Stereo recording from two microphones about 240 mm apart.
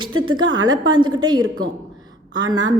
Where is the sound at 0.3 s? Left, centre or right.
Right.